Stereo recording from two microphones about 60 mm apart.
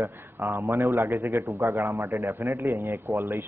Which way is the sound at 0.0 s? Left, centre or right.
Right.